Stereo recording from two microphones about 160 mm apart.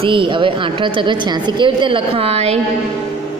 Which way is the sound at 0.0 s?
30° right (ahead or behind).